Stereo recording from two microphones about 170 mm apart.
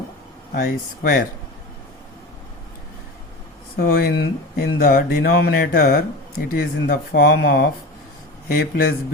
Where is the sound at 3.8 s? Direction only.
60° left (ahead or behind).